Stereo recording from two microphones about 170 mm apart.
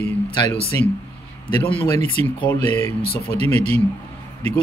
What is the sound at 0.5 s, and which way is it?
Speech, 40° right (ahead or behind).